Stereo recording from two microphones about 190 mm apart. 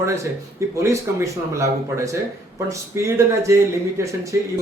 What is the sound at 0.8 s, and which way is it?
Speech, 15° right (ahead or behind).